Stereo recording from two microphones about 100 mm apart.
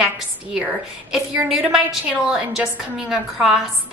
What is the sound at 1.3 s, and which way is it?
A woman's voice, 15° right (ahead or behind).